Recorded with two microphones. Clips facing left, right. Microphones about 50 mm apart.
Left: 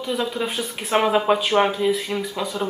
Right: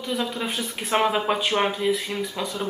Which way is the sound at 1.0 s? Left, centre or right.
Centre.